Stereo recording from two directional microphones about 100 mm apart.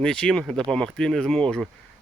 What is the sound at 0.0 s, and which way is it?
Speech, 5° left (ahead or behind).